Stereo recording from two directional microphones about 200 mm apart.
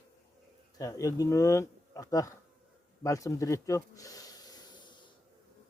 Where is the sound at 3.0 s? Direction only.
15° left (ahead or behind).